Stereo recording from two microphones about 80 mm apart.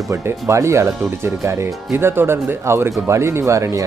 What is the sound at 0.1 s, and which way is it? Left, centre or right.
Speech, right.